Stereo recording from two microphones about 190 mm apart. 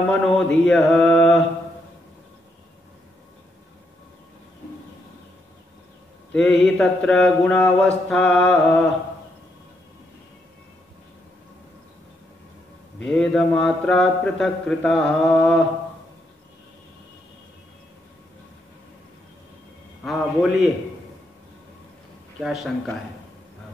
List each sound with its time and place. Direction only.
0.1 s speech: 5° left (ahead or behind)
6.6 s speech: 5° left (ahead or behind)
13.0 s speech: centre (ahead or behind)
20.1 s speech: centre (ahead or behind)
22.4 s speech: centre (ahead or behind)